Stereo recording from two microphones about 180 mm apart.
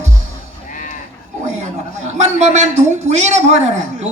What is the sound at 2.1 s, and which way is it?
A man's voice, 40° right (ahead or behind).